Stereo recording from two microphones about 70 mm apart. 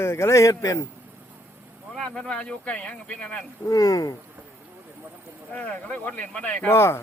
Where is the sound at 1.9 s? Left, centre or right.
Centre.